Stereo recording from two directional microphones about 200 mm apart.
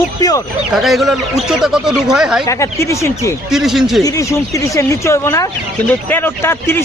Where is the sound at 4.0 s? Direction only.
15° left (ahead or behind).